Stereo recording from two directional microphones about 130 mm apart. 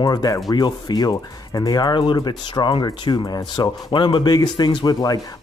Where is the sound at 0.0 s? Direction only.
30° left (ahead or behind).